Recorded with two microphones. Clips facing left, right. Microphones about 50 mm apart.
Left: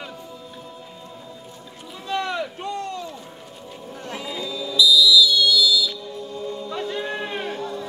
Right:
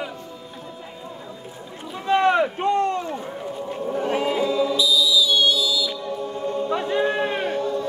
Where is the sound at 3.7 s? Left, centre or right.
Right.